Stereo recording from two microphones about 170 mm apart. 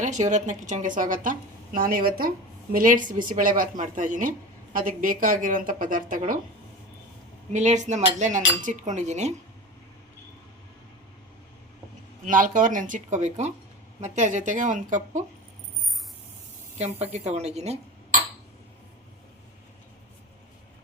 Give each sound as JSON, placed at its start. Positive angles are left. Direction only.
{"t": 0.0, "sound": "a woman's voice", "side_deg": -45}
{"t": 7.5, "sound": "a woman's voice", "side_deg": -45}
{"t": 12.2, "sound": "a woman's voice", "side_deg": -50}
{"t": 16.7, "sound": "a woman's voice", "side_deg": -40}